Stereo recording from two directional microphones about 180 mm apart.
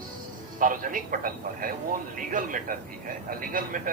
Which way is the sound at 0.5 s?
50° right (ahead or behind).